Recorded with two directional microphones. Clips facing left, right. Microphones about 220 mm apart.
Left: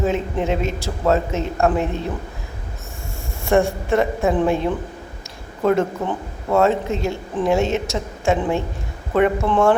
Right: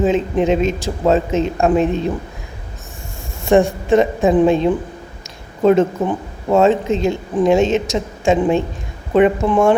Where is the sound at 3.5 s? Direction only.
20° right (ahead or behind).